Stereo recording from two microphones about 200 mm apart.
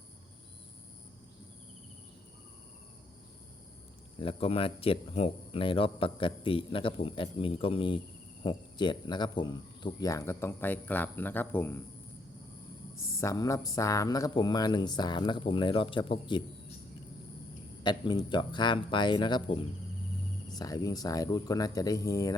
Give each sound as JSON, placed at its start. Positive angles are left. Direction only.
{"t": 4.2, "sound": "speech", "side_deg": 30}
{"t": 13.1, "sound": "speech", "side_deg": 15}
{"t": 17.8, "sound": "speech", "side_deg": 20}